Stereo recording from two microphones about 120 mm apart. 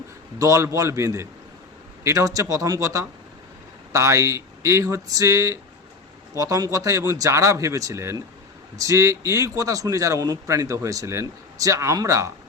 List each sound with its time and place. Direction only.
0.3 s a man's voice: 25° right (ahead or behind)